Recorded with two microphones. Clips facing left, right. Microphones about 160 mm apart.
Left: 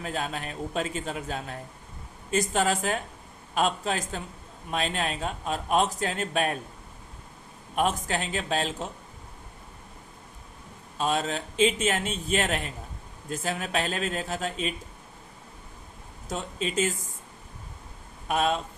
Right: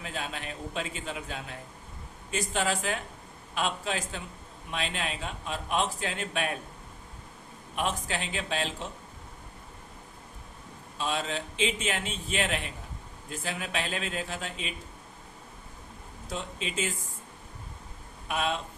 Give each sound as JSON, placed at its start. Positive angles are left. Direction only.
{"t": 0.0, "sound": "speech", "side_deg": 40}
{"t": 7.8, "sound": "speech", "side_deg": 45}
{"t": 10.9, "sound": "speech", "side_deg": 45}
{"t": 16.3, "sound": "speech", "side_deg": 40}
{"t": 18.3, "sound": "speech", "side_deg": 40}